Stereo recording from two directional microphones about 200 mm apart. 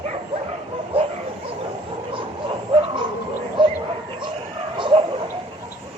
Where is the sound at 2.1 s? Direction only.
25° right (ahead or behind).